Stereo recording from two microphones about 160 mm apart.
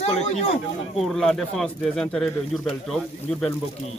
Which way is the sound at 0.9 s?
Centre (ahead or behind).